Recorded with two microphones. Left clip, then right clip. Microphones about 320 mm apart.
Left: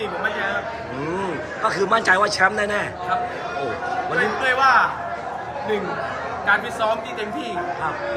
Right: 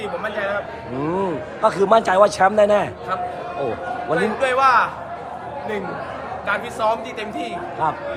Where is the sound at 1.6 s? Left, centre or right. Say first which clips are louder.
Right 3 dB; centre.